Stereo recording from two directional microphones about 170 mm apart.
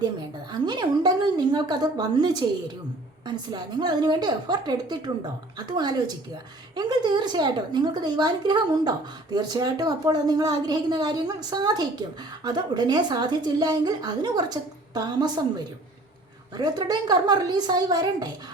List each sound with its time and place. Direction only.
0.5 s a woman's voice: 25° right (ahead or behind)